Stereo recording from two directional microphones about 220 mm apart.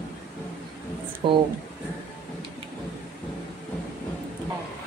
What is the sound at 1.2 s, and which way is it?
Speech, 20° right (ahead or behind).